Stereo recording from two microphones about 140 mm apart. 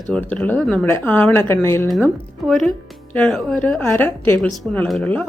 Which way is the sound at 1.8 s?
Centre (ahead or behind).